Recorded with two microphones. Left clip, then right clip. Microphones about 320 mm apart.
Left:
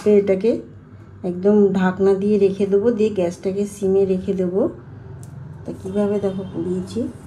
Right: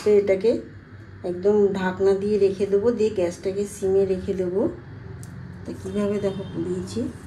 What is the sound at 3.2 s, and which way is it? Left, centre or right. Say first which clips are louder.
A woman's voice: left 3 dB; left.